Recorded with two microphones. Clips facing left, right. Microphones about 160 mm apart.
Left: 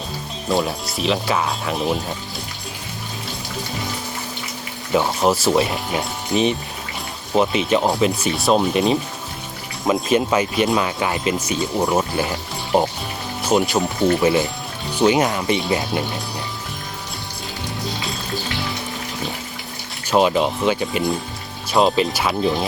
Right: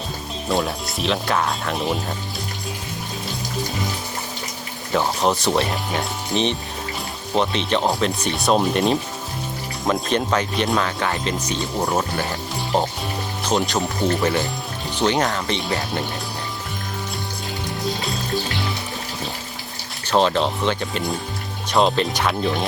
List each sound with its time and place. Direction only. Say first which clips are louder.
0.4 s speech: left 2 dB; centre (ahead or behind)
4.9 s speech: left 2 dB; 5° left (ahead or behind)
12.1 s speech: left 2 dB; 15° left (ahead or behind)
13.4 s speech: left 4 dB; 5° left (ahead or behind)
20.1 s speech: left 2 dB; 10° left (ahead or behind)